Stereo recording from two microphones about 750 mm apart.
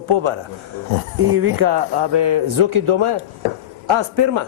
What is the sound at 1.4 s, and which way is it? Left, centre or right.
Speech, right.